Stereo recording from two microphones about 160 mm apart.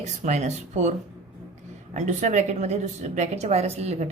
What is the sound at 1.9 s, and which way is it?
A woman's voice, 45° right (ahead or behind).